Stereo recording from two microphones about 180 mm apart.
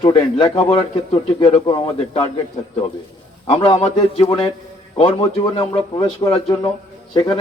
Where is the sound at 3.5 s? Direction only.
35° left (ahead or behind).